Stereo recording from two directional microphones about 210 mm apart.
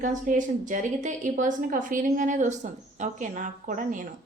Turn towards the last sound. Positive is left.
turn(degrees=-40)  # may be behind; listen again after turning